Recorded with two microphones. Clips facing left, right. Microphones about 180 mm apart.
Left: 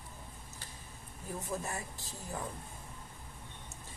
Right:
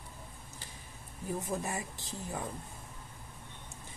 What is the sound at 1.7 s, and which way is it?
Speech, 20° right (ahead or behind).